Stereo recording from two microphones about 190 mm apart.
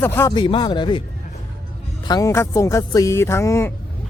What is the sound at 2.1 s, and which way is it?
Speech, 15° left (ahead or behind).